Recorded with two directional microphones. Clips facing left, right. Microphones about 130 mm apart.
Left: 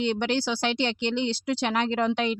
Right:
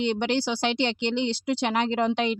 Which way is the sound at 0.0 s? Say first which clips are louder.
Right 1 dB; 20° right (ahead or behind).